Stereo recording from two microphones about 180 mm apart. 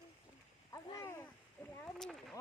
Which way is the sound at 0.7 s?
20° left (ahead or behind).